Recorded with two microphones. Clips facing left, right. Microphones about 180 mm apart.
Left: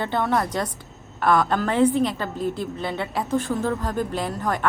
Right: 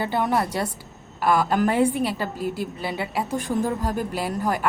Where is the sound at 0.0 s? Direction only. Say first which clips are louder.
Even; 10° right (ahead or behind).